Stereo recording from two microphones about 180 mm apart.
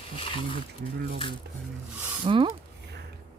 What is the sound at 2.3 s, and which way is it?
Speech, 30° right (ahead or behind).